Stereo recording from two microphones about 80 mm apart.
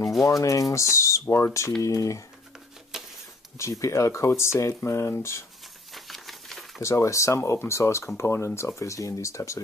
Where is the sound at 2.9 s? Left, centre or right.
Centre.